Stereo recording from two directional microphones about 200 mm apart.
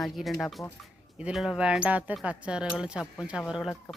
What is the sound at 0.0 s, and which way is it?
Speech, centre (ahead or behind).